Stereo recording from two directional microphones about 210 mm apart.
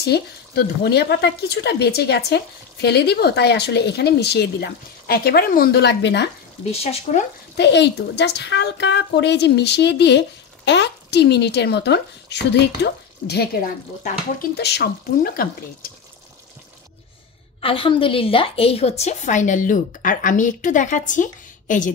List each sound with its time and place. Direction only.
0.0 s speech: 50° left (ahead or behind)
6.6 s speech: 30° left (ahead or behind)
7.5 s speech: 55° left (ahead or behind)
14.6 s speech: 50° left (ahead or behind)
17.6 s a woman's voice: 25° left (ahead or behind)